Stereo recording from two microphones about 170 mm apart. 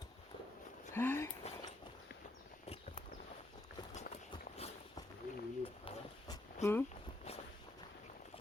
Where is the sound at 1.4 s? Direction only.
40° left (ahead or behind).